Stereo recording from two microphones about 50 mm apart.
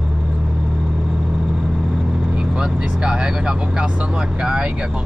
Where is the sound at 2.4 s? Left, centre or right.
Centre.